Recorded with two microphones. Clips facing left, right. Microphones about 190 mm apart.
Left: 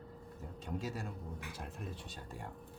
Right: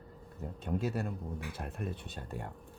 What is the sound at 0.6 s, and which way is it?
Speech, 60° right (ahead or behind).